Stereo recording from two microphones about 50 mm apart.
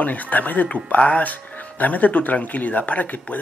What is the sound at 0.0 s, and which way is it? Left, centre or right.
Speech, left.